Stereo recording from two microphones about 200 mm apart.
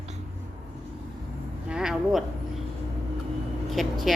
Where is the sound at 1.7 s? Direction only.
Centre (ahead or behind).